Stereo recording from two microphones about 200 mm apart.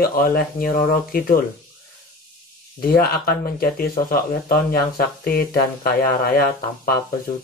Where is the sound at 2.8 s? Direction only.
50° left (ahead or behind).